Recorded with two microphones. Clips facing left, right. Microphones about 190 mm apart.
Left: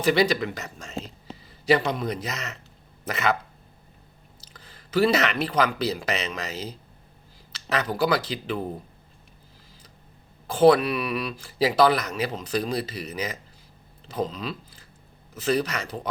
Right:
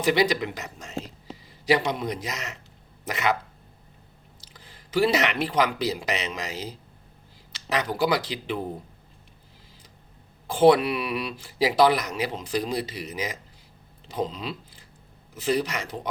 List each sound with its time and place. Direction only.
0.0 s speech: 15° right (ahead or behind)
4.5 s speech: 20° right (ahead or behind)
10.4 s speech: 20° right (ahead or behind)